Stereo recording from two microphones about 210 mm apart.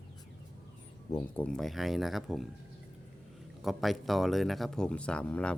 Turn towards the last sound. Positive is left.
turn(degrees=5)  # may be behind; listen again after turning